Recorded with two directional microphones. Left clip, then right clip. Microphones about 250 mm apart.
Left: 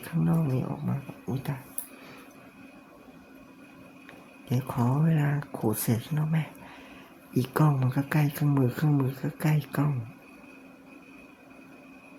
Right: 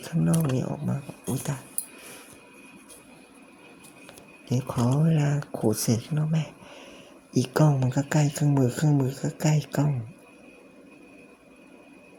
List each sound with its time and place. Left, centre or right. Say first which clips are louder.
0.0 s speech: right 3 dB; centre
4.4 s speech: right 2 dB; centre